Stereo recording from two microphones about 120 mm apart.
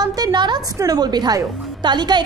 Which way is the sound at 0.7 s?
30° right (ahead or behind).